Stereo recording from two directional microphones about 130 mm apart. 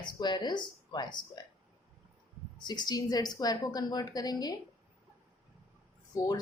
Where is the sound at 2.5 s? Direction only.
35° left (ahead or behind).